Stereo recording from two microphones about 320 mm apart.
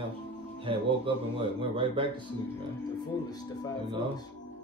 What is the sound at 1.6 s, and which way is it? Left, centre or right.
Speech, centre.